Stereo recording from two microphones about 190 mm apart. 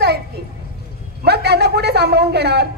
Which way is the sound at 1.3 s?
60° right (ahead or behind).